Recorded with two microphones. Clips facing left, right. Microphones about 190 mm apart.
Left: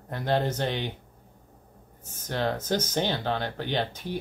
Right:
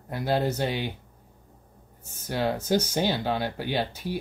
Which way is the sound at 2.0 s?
10° right (ahead or behind).